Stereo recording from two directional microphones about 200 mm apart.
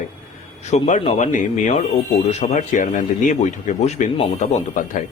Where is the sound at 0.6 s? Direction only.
35° left (ahead or behind).